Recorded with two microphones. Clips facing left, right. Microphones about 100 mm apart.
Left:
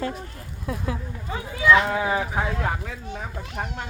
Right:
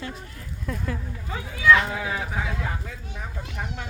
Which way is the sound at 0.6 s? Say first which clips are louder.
Left 2 dB; 15° left (ahead or behind).